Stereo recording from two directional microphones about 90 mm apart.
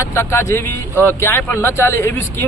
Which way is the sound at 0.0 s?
30° left (ahead or behind).